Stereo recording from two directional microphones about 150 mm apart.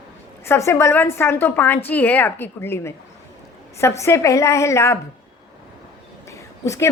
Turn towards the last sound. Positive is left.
turn(degrees=20)  # may be behind; listen again after turning